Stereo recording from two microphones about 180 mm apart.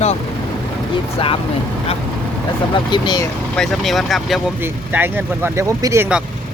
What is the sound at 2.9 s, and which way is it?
Speech, 25° left (ahead or behind).